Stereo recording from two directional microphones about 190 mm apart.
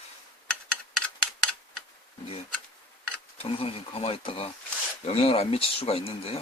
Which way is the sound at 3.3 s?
30° left (ahead or behind).